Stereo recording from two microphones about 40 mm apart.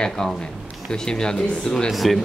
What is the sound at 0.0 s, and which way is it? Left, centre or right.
Speech, centre.